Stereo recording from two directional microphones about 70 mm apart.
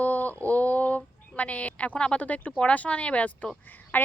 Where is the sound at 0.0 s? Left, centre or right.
Left.